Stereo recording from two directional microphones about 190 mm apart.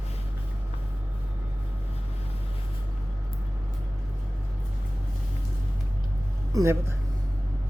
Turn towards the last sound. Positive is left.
turn(degrees=-15)  # may be behind; listen again after turning